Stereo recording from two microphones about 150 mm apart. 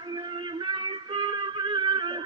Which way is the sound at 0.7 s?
30° right (ahead or behind).